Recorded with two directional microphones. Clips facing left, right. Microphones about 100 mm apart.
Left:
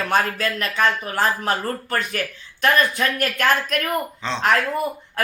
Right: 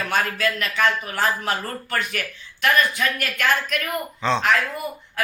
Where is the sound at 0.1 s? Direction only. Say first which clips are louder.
Left 1 dB; 35° left (ahead or behind).